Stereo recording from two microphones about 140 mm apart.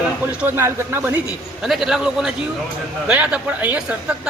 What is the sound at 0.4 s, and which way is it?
Speech, 20° right (ahead or behind).